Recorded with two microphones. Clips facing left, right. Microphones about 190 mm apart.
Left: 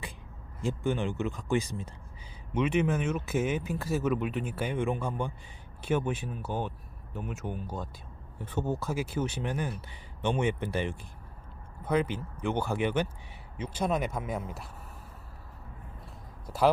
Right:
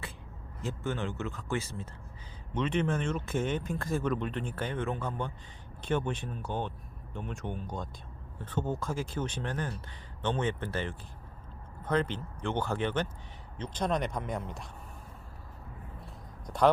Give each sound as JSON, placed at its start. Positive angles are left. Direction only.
{"t": 0.6, "sound": "speech", "side_deg": 15}
{"t": 16.5, "sound": "speech", "side_deg": 5}